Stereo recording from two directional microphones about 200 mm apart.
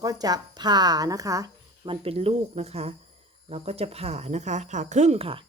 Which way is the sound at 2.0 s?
30° right (ahead or behind).